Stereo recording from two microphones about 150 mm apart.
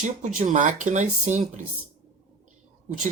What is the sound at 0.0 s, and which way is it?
Speech, 55° right (ahead or behind).